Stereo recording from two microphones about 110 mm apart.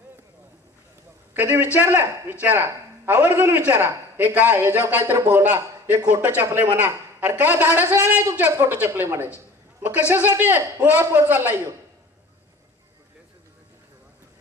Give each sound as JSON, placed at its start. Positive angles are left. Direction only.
{"t": 1.3, "sound": "a man's voice", "side_deg": -20}